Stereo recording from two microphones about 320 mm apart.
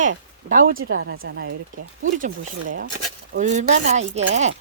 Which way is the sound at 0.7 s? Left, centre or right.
Right.